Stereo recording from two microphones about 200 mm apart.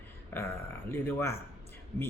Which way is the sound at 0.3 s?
10° left (ahead or behind).